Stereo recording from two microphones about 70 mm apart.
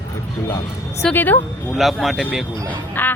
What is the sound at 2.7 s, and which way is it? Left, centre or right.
Speech, left.